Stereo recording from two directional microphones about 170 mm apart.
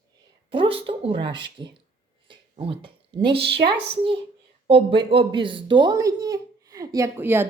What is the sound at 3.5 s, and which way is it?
Speech, 30° right (ahead or behind).